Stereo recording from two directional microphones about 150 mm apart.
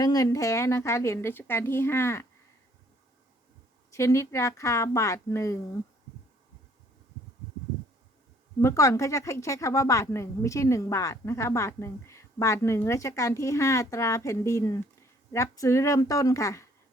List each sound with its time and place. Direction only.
0.0 s speech: 25° left (ahead or behind)
3.9 s speech: 20° left (ahead or behind)
8.6 s speech: 20° left (ahead or behind)